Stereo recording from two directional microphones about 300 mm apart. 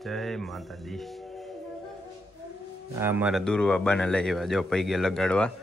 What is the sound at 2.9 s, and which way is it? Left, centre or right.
Speech, centre.